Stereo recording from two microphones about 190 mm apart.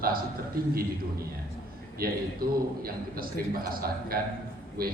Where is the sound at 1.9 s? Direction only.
50° right (ahead or behind).